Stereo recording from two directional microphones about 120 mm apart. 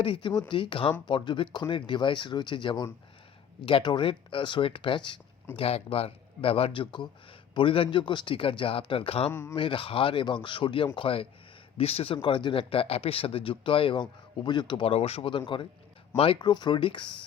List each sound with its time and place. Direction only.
0.0 s speech: 45° left (ahead or behind)
5.5 s speech: 55° left (ahead or behind)
9.3 s speech: 20° left (ahead or behind)
9.6 s speech: 45° left (ahead or behind)
16.4 s speech: 40° left (ahead or behind)